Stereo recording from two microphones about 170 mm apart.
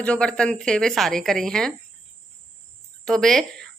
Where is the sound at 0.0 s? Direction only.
5° left (ahead or behind).